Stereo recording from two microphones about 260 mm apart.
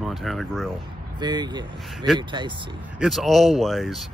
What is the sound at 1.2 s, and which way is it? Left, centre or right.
Speech, centre.